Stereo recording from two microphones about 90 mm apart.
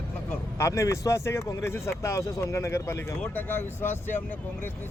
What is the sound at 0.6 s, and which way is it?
Speech, 35° left (ahead or behind).